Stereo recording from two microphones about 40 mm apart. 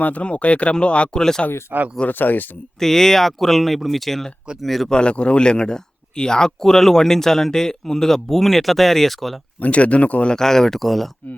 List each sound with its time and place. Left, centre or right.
0.0 s speech: left
2.0 s speech: left
2.7 s speech: centre
4.9 s speech: left; by 9.4 s centre
9.6 s speech: left
10.2 s speech: centre